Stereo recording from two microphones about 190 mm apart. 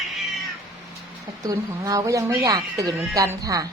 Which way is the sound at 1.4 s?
20° right (ahead or behind).